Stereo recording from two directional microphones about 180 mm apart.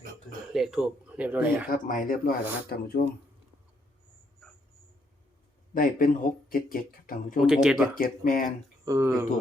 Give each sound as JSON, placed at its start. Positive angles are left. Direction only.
{"t": 0.5, "sound": "speech", "side_deg": 0}
{"t": 1.7, "sound": "speech", "side_deg": 50}
{"t": 5.7, "sound": "speech", "side_deg": 50}
{"t": 7.4, "sound": "speech", "side_deg": -5}
{"t": 7.9, "sound": "speech", "side_deg": 50}
{"t": 8.8, "sound": "speech", "side_deg": -15}